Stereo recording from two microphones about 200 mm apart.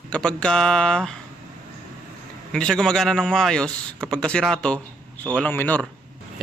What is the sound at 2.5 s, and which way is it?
A man's voice, 5° left (ahead or behind).